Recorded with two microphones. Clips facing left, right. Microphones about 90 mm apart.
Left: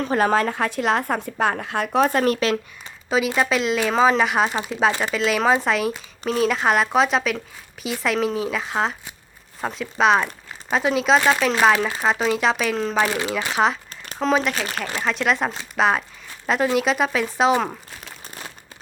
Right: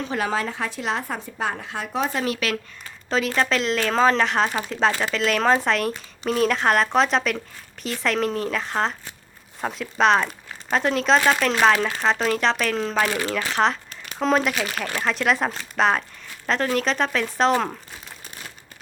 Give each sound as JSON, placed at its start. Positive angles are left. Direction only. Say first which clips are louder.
{"t": 0.0, "sound": "a woman's voice", "louder": "left 6 dB", "side_deg": 45}
{"t": 3.1, "sound": "speech", "louder": "left 2 dB", "side_deg": 10}
{"t": 13.9, "sound": "crumpling", "louder": "left 1 dB", "side_deg": 35}
{"t": 14.2, "sound": "speech", "louder": "even", "side_deg": 0}